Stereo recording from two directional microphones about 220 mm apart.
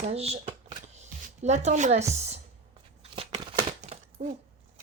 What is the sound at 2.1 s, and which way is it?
Speech, 30° right (ahead or behind).